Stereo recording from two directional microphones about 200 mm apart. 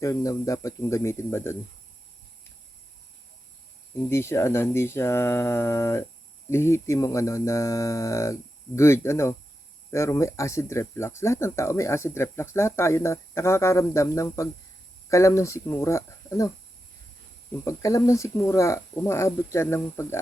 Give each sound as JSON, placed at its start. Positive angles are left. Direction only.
{"t": 0.0, "sound": "speech", "side_deg": 15}
{"t": 4.1, "sound": "speech", "side_deg": 15}
{"t": 17.5, "sound": "speech", "side_deg": 15}